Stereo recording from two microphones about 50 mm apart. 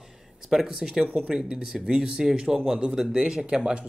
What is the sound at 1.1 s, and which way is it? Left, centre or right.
Speech, right.